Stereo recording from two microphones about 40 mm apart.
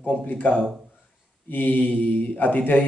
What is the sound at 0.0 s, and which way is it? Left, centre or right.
A man's voice, left.